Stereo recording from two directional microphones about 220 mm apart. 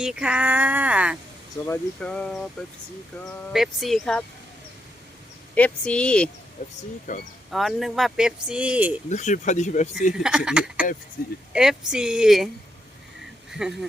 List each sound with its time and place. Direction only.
0.0 s speech: 5° right (ahead or behind)
1.6 s speech: 10° left (ahead or behind)
5.5 s speech: 5° left (ahead or behind)
6.6 s speech: 30° left (ahead or behind)
7.5 s speech: centre (ahead or behind)
9.0 s speech: 35° left (ahead or behind)
10.2 s speech: 5° right (ahead or behind)
11.2 s speech: 40° left (ahead or behind)
11.5 s speech: 5° right (ahead or behind)
13.5 s speech: centre (ahead or behind)